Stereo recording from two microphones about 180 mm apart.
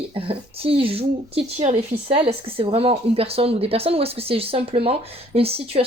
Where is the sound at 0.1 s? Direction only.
30° right (ahead or behind).